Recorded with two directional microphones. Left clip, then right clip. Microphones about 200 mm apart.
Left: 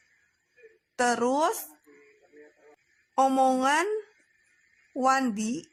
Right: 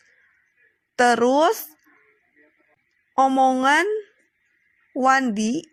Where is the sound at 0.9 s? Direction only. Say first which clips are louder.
Right 8 dB; 25° right (ahead or behind).